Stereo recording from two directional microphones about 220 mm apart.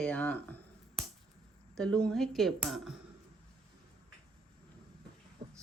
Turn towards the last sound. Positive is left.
turn(degrees=-20)  # may be behind; listen again after turning